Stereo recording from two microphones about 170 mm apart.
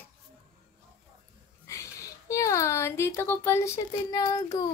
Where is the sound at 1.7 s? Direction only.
20° left (ahead or behind).